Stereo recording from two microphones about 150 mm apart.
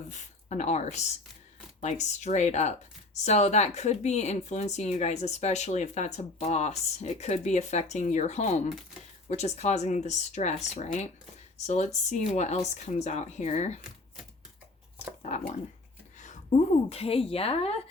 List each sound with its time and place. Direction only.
0.1 s speech: 50° left (ahead or behind)
16.1 s a woman's voice: 55° left (ahead or behind)